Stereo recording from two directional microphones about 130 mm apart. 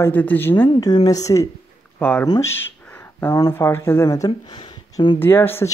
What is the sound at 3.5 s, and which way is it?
Speech, 20° left (ahead or behind).